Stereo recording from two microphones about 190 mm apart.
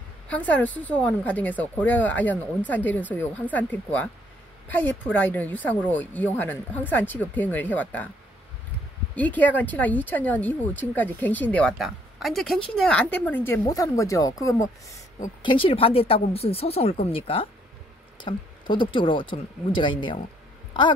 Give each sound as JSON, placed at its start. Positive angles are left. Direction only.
{"t": 0.3, "sound": "speech", "side_deg": 10}
{"t": 9.1, "sound": "speech", "side_deg": 10}
{"t": 15.4, "sound": "speech", "side_deg": 25}